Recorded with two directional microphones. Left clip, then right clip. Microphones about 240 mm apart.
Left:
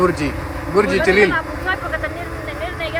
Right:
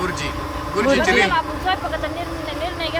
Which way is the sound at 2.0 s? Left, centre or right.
Right.